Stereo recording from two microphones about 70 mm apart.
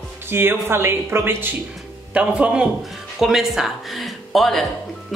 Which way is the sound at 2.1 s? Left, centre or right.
Centre.